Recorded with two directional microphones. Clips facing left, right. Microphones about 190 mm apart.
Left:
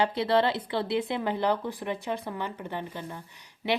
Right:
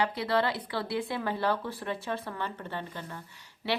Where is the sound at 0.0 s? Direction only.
25° left (ahead or behind).